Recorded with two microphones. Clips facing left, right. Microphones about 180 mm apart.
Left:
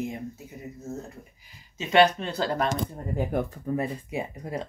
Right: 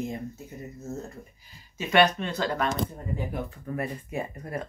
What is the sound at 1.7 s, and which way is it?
Speech, 25° left (ahead or behind).